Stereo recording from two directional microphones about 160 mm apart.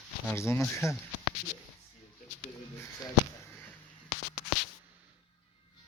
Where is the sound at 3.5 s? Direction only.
15° left (ahead or behind).